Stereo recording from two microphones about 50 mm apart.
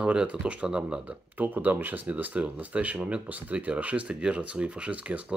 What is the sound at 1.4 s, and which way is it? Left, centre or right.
Speech, right.